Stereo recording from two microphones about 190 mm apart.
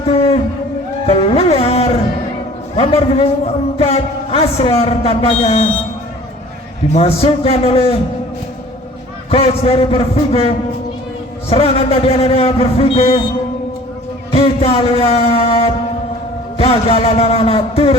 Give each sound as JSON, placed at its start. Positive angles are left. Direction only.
{"t": 1.0, "sound": "a man's voice", "side_deg": 30}
{"t": 6.9, "sound": "a man's voice", "side_deg": 30}
{"t": 9.3, "sound": "a man's voice", "side_deg": 30}
{"t": 14.3, "sound": "a man's voice", "side_deg": 30}